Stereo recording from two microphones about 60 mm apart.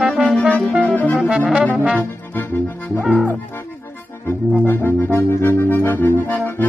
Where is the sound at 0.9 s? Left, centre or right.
Left.